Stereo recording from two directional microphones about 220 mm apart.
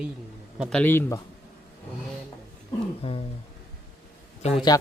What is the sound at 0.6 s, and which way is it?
Speech, 5° left (ahead or behind).